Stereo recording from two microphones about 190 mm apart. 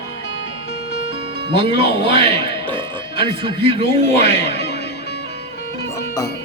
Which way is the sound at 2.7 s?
30° right (ahead or behind).